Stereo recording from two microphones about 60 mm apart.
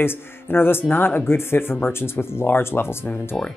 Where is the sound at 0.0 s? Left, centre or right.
Left.